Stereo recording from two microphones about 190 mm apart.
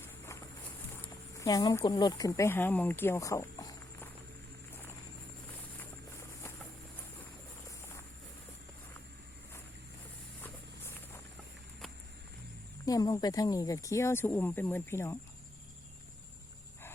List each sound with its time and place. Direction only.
1.0 s speech: 15° left (ahead or behind)
10.4 s walk: 10° left (ahead or behind)
12.8 s speech: 20° left (ahead or behind)